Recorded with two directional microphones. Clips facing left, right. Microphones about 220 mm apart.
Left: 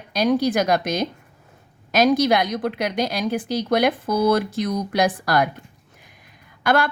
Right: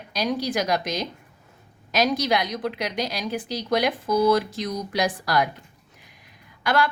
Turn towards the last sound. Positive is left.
turn(degrees=50)  # may be behind; listen again after turning